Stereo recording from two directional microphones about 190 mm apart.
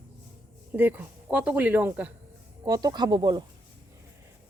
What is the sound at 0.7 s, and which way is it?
Speech, 10° right (ahead or behind).